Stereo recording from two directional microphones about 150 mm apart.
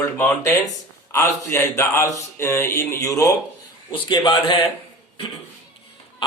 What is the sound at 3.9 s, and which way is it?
Speech, 35° left (ahead or behind).